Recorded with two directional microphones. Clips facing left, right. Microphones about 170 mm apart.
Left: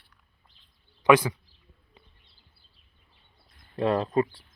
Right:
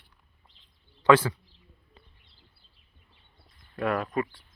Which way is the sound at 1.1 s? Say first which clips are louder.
Even; 15° left (ahead or behind).